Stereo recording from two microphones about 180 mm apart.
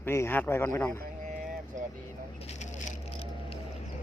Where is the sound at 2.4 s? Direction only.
40° left (ahead or behind).